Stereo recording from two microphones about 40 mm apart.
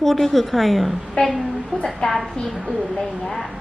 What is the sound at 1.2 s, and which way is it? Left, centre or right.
Speech, left.